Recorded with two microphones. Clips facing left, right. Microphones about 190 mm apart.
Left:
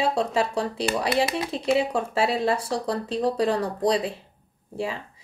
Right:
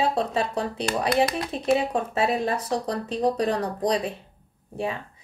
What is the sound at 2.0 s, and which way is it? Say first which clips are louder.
Speech: even; 30° left (ahead or behind).